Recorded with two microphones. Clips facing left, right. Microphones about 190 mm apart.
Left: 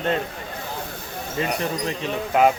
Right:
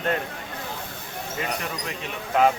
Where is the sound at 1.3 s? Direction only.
30° left (ahead or behind).